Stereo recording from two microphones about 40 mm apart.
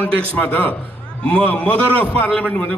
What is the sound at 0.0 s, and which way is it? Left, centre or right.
A man's voice, left.